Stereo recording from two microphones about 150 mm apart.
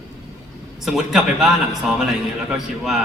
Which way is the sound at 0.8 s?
5° right (ahead or behind).